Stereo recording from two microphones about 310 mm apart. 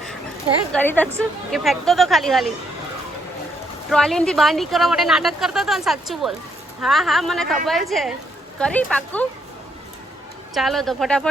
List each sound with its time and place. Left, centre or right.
0.7 s speech: centre
3.8 s speech: centre
10.5 s speech: centre